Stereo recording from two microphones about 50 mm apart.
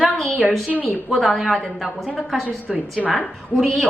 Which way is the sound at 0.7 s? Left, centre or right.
Left.